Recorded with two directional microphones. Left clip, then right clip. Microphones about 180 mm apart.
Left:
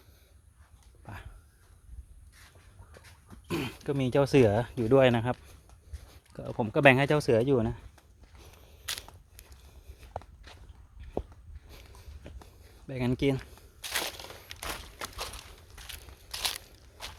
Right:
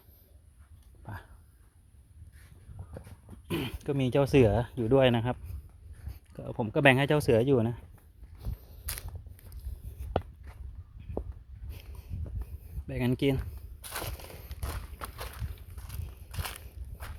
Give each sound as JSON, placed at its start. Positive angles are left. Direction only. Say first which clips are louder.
{"t": 1.0, "sound": "dog", "louder": "right 1 dB", "side_deg": -15}
{"t": 3.4, "sound": "speech", "louder": "left 1 dB", "side_deg": -10}
{"t": 8.4, "sound": "walk", "louder": "right 6 dB", "side_deg": -15}
{"t": 8.9, "sound": "walk", "louder": "left 6 dB", "side_deg": 0}
{"t": 11.7, "sound": "a sound", "louder": "left 1 dB", "side_deg": -15}
{"t": 12.9, "sound": "speech", "louder": "even", "side_deg": -15}
{"t": 13.9, "sound": "a sound", "louder": "left 5 dB", "side_deg": 0}
{"t": 16.0, "sound": "walk", "louder": "left 8 dB", "side_deg": 0}